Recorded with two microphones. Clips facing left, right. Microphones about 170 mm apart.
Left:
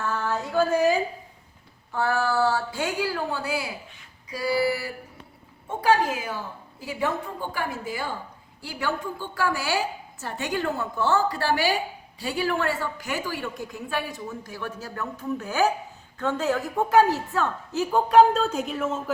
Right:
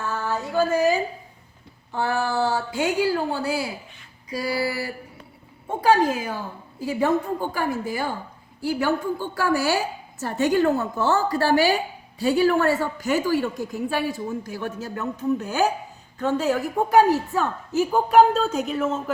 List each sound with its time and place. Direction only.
0.0 s female singing: 5° right (ahead or behind)
1.9 s a woman's voice: 15° right (ahead or behind); by 3.7 s 30° right (ahead or behind)
4.3 s a sound: 40° right (ahead or behind)
5.6 s a woman's voice: 40° right (ahead or behind)
8.6 s a woman's voice: 45° right (ahead or behind)
13.9 s a woman's voice: 30° right (ahead or behind); by 19.1 s centre (ahead or behind)